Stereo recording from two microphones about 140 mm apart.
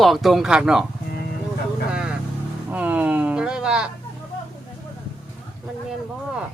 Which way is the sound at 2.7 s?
10° right (ahead or behind).